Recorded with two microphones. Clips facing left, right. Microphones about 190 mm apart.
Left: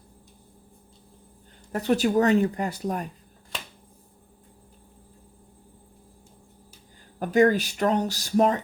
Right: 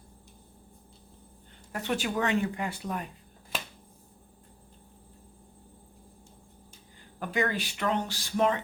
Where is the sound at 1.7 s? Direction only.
40° left (ahead or behind).